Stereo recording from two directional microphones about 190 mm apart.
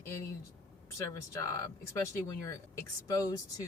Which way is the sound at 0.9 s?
15° left (ahead or behind).